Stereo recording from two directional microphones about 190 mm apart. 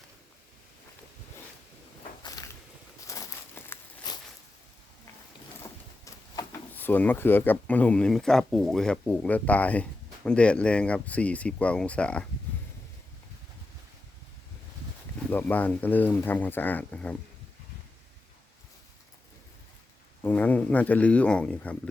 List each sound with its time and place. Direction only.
3.1 s a sound: 15° left (ahead or behind)
6.3 s speech: 15° left (ahead or behind)
15.3 s speech: 10° left (ahead or behind)
20.2 s speech: 10° left (ahead or behind)